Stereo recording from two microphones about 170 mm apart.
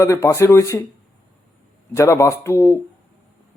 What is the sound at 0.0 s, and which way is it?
Speech, 15° left (ahead or behind).